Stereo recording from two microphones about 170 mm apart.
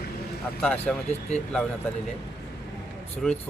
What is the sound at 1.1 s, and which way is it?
Speech, 40° left (ahead or behind).